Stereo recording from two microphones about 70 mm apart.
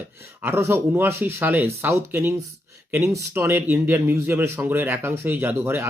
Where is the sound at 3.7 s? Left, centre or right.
Right.